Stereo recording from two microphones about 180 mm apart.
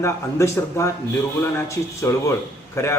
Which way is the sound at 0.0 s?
15° left (ahead or behind).